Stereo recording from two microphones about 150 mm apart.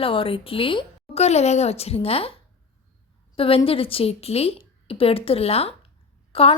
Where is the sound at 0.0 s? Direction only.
35° left (ahead or behind).